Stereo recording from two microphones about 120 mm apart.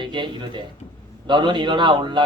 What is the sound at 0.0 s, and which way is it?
Speech, 40° right (ahead or behind).